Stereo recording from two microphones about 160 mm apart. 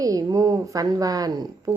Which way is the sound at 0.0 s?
20° right (ahead or behind).